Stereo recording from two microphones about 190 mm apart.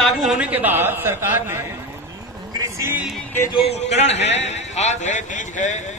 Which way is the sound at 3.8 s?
35° left (ahead or behind).